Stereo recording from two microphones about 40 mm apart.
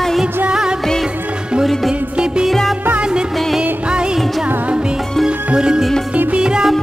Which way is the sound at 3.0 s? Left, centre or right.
Right.